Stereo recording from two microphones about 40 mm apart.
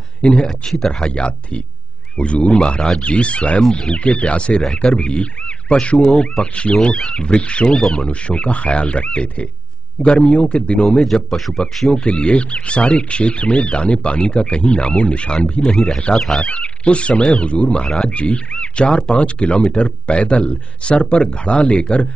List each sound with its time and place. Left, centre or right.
0.4 s speech: centre
2.1 s speech: left
6.0 s speech: centre
6.4 s speech: left
8.3 s speech: left
10.9 s speech: centre
11.9 s speech: left
16.2 s speech: centre
16.4 s speech: left